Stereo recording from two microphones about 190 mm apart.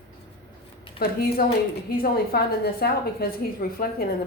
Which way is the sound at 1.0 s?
55° left (ahead or behind).